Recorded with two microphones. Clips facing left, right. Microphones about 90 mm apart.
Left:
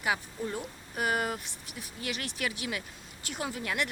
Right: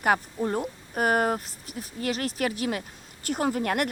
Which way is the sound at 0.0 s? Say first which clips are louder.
Right 7 dB; 50° right (ahead or behind).